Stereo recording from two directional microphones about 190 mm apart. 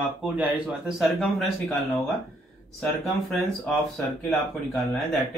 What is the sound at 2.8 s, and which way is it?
Speech, 5° left (ahead or behind).